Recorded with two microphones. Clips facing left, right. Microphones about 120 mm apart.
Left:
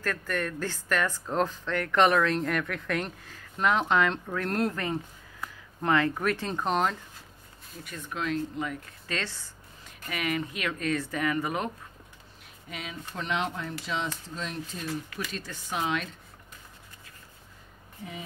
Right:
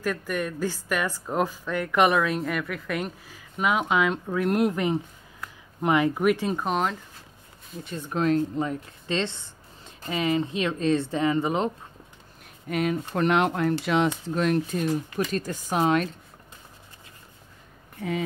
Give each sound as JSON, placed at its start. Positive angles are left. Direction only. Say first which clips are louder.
{"t": 0.0, "sound": "a woman's voice", "louder": "right 3 dB", "side_deg": -10}
{"t": 7.8, "sound": "speech", "louder": "right 8 dB", "side_deg": -30}
{"t": 12.6, "sound": "speech", "louder": "right 14 dB", "side_deg": -55}
{"t": 15.1, "sound": "speech", "louder": "right 9 dB", "side_deg": -45}
{"t": 18.0, "sound": "speech", "louder": "right 12 dB", "side_deg": -65}